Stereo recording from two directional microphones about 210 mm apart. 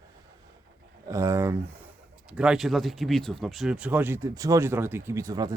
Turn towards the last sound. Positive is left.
turn(degrees=-15)  # may be behind; listen again after turning